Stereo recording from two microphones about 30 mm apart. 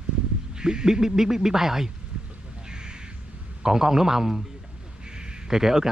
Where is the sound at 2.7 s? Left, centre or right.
Right.